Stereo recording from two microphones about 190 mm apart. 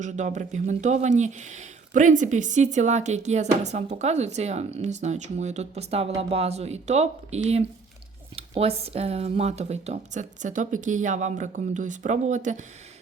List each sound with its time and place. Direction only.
0.0 s speech: 40° right (ahead or behind)